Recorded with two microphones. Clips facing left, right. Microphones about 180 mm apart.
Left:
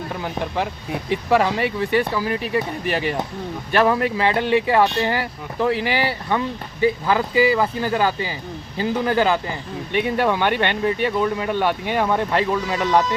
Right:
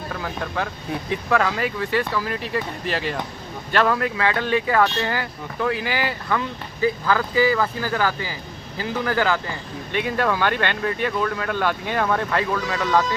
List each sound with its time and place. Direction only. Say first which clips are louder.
0.1 s speech: left 2 dB; 25° left (ahead or behind)